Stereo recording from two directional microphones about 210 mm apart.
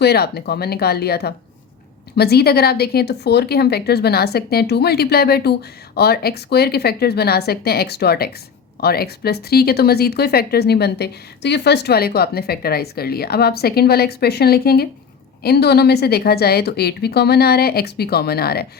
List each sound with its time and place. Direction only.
0.0 s speech: 50° left (ahead or behind)